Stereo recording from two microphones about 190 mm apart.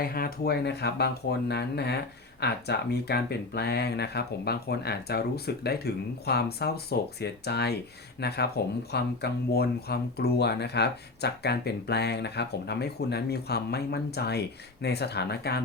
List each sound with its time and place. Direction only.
0.0 s speech: 50° left (ahead or behind)